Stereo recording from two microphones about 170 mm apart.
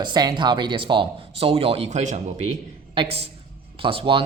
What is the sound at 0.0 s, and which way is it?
A woman's voice, 25° right (ahead or behind).